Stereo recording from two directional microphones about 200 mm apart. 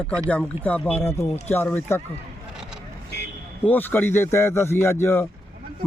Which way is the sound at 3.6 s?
10° left (ahead or behind).